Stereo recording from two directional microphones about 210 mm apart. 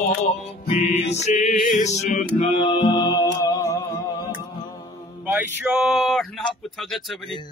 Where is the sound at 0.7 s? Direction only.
30° left (ahead or behind).